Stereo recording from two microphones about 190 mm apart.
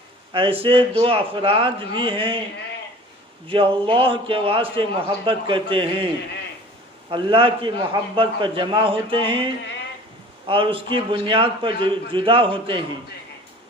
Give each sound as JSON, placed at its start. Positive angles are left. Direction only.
{"t": 0.3, "sound": "a man's voice", "side_deg": -30}
{"t": 3.5, "sound": "a man's voice", "side_deg": -30}
{"t": 7.1, "sound": "a man's voice", "side_deg": -30}